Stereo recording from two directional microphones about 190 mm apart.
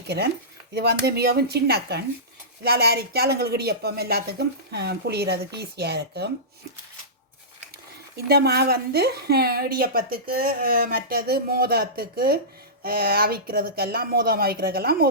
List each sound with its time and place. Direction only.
0.7 s a woman's voice: 60° right (ahead or behind)
8.1 s speech: 55° right (ahead or behind)